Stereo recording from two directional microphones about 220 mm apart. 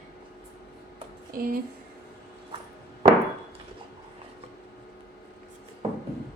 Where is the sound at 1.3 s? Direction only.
40° right (ahead or behind).